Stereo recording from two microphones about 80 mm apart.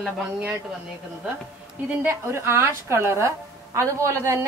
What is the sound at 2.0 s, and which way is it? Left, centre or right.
Speech, right.